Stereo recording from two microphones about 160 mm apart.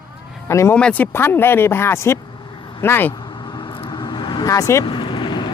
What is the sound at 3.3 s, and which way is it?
Vehicle, 25° left (ahead or behind).